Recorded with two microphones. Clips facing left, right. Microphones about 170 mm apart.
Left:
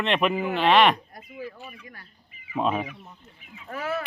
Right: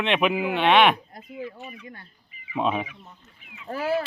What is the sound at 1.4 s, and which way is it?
Speech, 25° right (ahead or behind).